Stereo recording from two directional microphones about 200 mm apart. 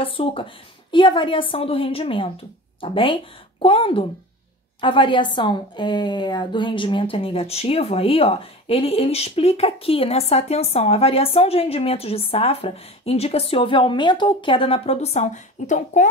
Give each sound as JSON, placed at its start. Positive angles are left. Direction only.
{"t": 0.0, "sound": "a woman's voice", "side_deg": 25}